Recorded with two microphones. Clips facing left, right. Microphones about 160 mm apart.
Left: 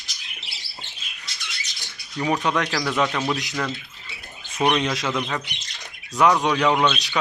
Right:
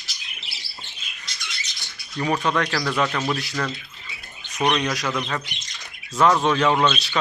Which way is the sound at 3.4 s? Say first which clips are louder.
Even; 20° left (ahead or behind).